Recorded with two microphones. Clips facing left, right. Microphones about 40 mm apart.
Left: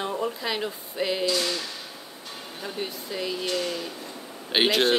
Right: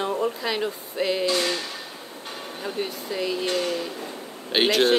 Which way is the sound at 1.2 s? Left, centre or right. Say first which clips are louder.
Right 2 dB; right.